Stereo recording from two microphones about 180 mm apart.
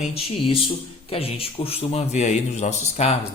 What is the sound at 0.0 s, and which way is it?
A man's voice, 30° left (ahead or behind).